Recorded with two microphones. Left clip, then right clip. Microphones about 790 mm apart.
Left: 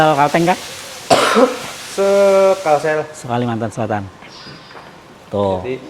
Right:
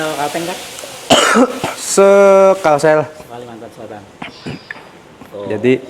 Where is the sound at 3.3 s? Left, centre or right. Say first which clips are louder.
Left 11 dB; left.